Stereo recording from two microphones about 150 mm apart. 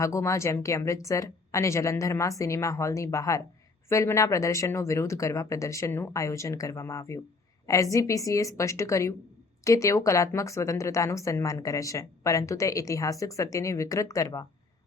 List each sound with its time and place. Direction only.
0.0 s speech: 20° left (ahead or behind)